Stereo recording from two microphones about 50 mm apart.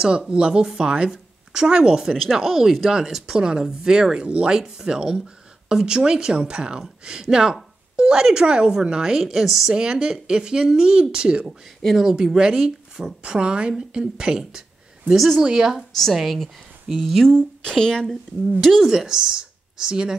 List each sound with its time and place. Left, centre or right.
0.3 s a woman's voice: centre
9.8 s a woman's voice: centre
15.0 s a woman's voice: centre
16.0 s a woman's voice: centre
17.6 s speech: centre
18.7 s a woman's voice: centre